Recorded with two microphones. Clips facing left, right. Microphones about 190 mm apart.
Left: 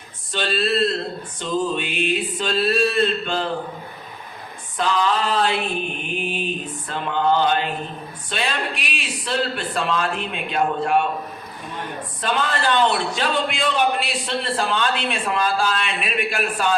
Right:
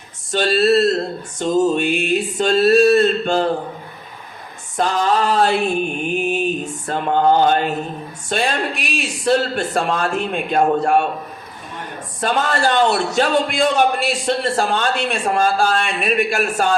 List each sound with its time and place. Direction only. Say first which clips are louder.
0.3 s a man's voice: right 7 dB; 45° right (ahead or behind)
4.8 s a man's voice: right 3 dB; 45° right (ahead or behind)
12.2 s a man's voice: right 4 dB; 45° right (ahead or behind)